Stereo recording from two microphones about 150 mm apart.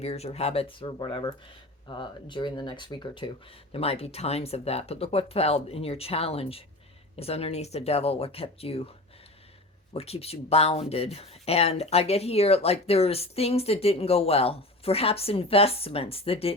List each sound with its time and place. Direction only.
0.0 s speech: 45° left (ahead or behind)
9.9 s speech: 40° left (ahead or behind)